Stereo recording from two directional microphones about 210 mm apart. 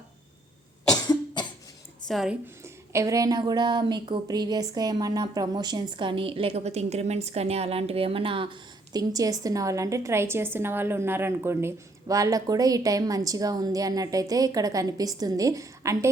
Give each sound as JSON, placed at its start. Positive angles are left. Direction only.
{"t": 1.0, "sound": "cough", "side_deg": 20}
{"t": 2.0, "sound": "a woman's voice", "side_deg": 0}
{"t": 2.9, "sound": "speech", "side_deg": -15}